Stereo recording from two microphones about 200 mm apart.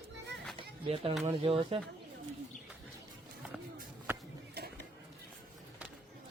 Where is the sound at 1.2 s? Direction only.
25° right (ahead or behind).